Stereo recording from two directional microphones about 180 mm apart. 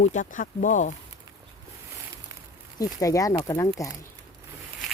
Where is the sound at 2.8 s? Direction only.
20° left (ahead or behind).